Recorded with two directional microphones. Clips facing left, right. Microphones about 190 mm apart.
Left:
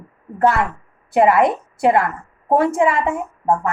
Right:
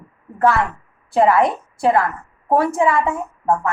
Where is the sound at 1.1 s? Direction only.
20° left (ahead or behind).